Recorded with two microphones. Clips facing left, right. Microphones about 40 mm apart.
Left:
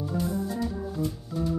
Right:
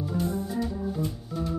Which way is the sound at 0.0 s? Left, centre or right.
Centre.